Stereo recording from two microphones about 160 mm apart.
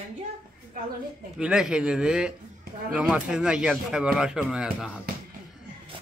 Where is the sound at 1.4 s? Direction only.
5° right (ahead or behind).